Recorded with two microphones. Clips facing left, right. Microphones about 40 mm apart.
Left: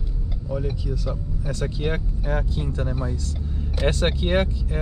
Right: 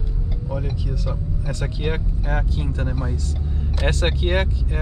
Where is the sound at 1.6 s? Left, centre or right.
Right.